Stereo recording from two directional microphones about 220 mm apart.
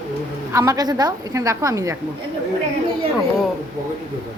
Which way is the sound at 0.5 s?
15° right (ahead or behind).